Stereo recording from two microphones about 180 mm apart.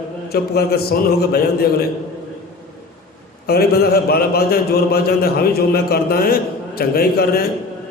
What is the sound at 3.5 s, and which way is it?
A man's voice, 60° left (ahead or behind).